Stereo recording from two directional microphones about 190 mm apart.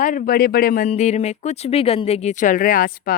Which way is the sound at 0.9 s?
35° left (ahead or behind).